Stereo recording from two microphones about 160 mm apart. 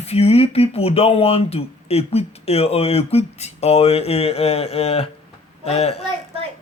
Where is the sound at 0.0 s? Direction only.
40° left (ahead or behind).